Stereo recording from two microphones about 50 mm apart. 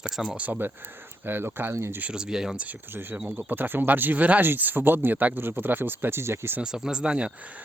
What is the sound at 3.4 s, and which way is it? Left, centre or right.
Speech, right.